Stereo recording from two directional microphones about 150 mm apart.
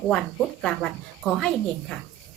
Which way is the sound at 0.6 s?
5° left (ahead or behind).